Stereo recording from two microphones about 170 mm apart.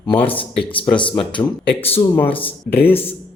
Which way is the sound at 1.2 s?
30° left (ahead or behind).